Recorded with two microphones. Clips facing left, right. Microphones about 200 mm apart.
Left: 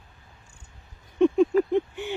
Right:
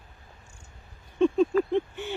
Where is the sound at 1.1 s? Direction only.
15° left (ahead or behind).